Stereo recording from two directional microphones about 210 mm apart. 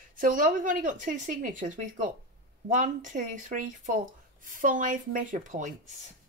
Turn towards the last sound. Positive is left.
turn(degrees=-35)  # may be behind; listen again after turning